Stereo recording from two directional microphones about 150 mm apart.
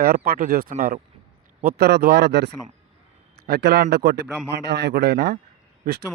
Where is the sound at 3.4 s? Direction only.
90° right.